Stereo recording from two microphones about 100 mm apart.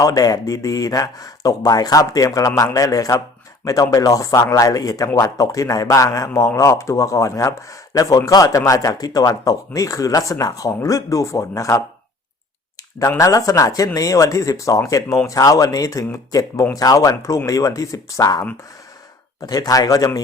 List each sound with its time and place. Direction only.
0.0 s speech: 40° left (ahead or behind)
13.0 s speech: 35° left (ahead or behind)